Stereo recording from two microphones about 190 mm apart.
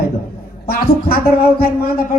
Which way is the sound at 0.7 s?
50° left (ahead or behind).